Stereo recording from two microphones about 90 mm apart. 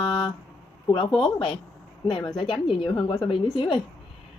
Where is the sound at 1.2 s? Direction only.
75° left (ahead or behind).